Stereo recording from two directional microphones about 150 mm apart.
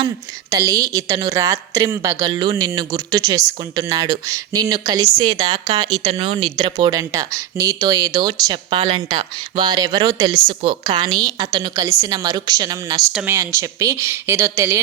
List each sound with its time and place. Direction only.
0.5 s a woman's voice: 20° right (ahead or behind)
6.1 s a woman's voice: 40° right (ahead or behind); by 10.3 s 25° right (ahead or behind)
10.3 s a woman's voice: 35° right (ahead or behind); by 14.8 s 20° right (ahead or behind)